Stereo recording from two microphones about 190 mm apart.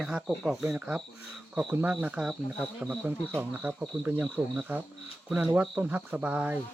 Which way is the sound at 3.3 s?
5° right (ahead or behind).